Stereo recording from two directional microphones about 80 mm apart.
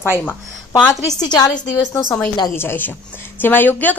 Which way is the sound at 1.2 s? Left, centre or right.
Left.